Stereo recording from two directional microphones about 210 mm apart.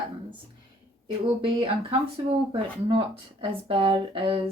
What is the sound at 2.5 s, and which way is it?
Speech, 25° right (ahead or behind).